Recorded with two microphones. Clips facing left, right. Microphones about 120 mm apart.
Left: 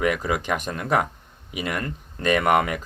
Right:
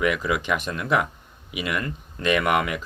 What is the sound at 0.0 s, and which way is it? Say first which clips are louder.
Speech: even; 40° left (ahead or behind).